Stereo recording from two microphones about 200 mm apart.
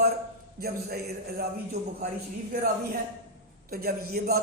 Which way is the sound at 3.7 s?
50° right (ahead or behind).